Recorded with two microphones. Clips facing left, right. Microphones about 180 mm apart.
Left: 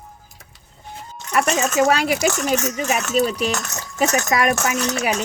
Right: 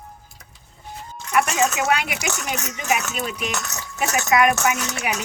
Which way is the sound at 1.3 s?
35° left (ahead or behind).